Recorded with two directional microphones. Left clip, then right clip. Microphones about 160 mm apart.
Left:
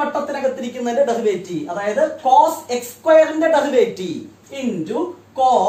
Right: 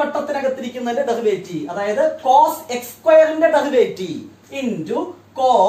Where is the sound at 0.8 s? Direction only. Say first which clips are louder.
Left 2 dB; 25° left (ahead or behind).